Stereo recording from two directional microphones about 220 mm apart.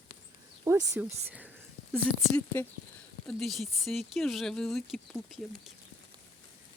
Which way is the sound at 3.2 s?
Centre (ahead or behind).